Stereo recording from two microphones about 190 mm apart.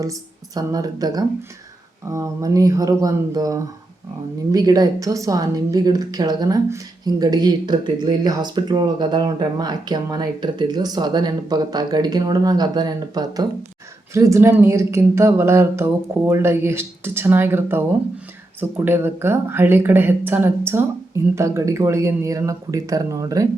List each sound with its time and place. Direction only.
0.0 s a woman's voice: 20° right (ahead or behind)